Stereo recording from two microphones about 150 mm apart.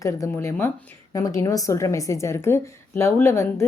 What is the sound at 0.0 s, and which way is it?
A woman's voice, 20° left (ahead or behind).